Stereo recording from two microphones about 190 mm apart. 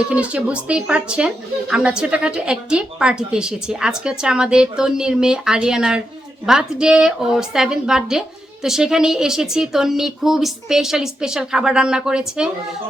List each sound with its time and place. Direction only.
0.1 s speech: 5° right (ahead or behind)